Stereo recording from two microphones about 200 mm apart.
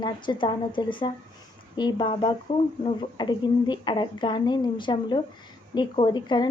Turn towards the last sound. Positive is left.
turn(degrees=20)  # may be behind; listen again after turning